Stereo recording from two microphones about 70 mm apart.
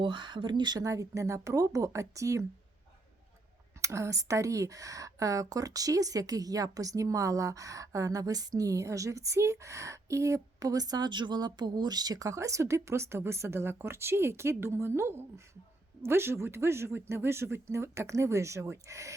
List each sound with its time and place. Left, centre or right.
0.3 s speech: right
0.9 s speech: right
3.8 s speech: right